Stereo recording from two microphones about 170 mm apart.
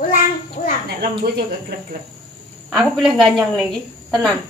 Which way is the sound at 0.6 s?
45° left (ahead or behind).